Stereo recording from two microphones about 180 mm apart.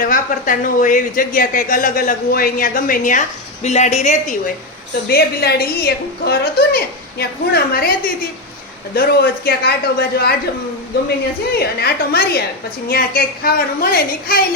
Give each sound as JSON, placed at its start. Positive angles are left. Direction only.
{"t": 0.0, "sound": "speech", "side_deg": 50}
{"t": 5.0, "sound": "a woman's voice", "side_deg": 60}
{"t": 11.6, "sound": "a woman's voice", "side_deg": 60}